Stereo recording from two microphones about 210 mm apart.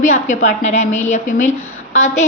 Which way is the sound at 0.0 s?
35° left (ahead or behind).